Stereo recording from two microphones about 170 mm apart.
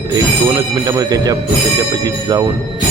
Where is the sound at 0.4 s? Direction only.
20° right (ahead or behind).